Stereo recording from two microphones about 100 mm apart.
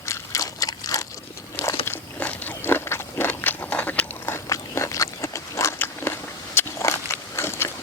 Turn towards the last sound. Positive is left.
turn(degrees=25)  # may be behind; listen again after turning